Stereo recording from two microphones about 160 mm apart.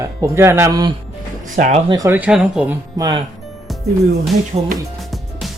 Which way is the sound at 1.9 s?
15° right (ahead or behind).